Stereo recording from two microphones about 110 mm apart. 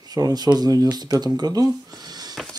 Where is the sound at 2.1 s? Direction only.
40° right (ahead or behind).